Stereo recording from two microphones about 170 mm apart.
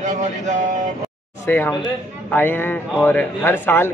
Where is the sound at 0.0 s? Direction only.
45° right (ahead or behind).